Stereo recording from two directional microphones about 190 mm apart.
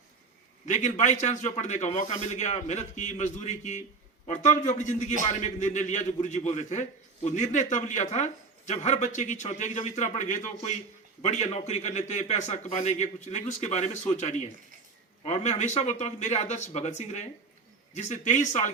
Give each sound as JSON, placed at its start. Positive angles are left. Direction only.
{"t": 0.6, "sound": "a man's voice", "side_deg": 40}